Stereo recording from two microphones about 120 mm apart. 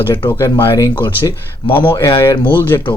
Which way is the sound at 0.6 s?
25° left (ahead or behind).